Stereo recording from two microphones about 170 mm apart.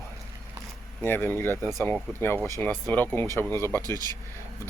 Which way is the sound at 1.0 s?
10° left (ahead or behind).